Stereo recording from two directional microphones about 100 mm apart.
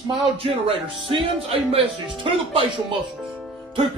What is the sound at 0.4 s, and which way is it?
Speech, 65° right (ahead or behind).